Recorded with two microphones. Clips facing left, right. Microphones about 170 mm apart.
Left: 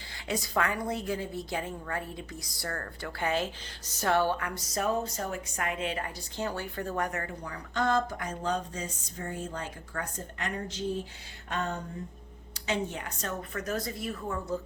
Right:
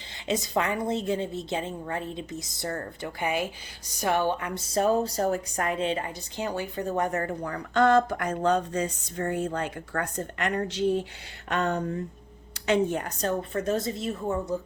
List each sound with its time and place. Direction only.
0.3 s a woman's voice: 20° right (ahead or behind)
6.3 s speech: 15° right (ahead or behind)
7.1 s speech: 40° right (ahead or behind)
7.4 s speech: 60° right (ahead or behind)
12.5 s a woman's voice: 60° right (ahead or behind); by 14.4 s 25° right (ahead or behind)